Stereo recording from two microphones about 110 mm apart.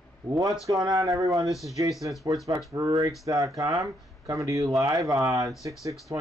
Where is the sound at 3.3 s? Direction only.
30° right (ahead or behind).